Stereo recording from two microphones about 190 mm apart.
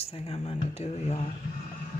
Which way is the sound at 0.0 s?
30° left (ahead or behind).